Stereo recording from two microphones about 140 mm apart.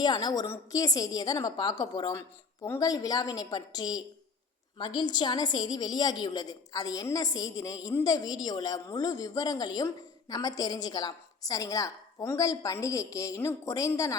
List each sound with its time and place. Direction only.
0.0 s a woman's voice: 30° left (ahead or behind)